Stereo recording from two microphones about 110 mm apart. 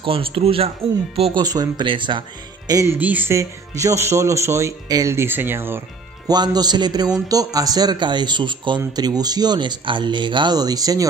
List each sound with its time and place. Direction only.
0.0 s a man's voice: 55° right (ahead or behind)
1.3 s speech: 35° right (ahead or behind)
2.7 s speech: 30° right (ahead or behind)
3.0 s speech: 15° right (ahead or behind)
3.3 s speech: 30° right (ahead or behind)
6.2 s a man's voice: 40° right (ahead or behind)